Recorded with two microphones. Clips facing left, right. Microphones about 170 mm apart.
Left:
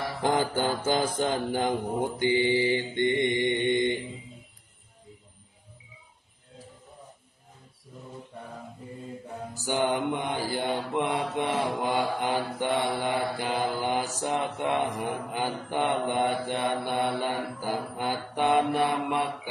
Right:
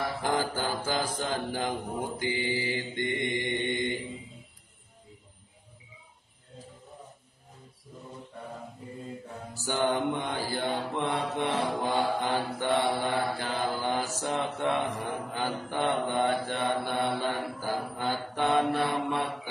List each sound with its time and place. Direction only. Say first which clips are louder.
0.2 s mantra: left 7 dB; 20° left (ahead or behind)
9.6 s mantra: left 1 dB; 15° left (ahead or behind)